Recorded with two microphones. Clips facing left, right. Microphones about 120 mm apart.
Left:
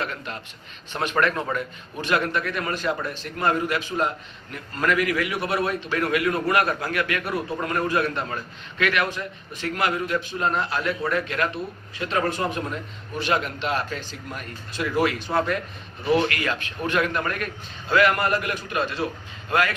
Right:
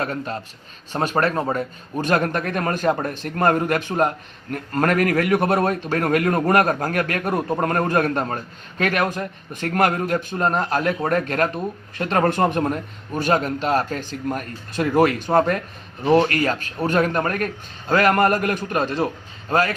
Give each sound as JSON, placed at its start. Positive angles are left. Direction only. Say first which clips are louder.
{"t": 0.0, "sound": "a man's voice", "louder": "right 5 dB", "side_deg": -40}